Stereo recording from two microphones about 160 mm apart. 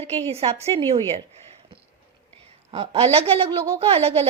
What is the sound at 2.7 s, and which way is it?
Speech, 35° right (ahead or behind).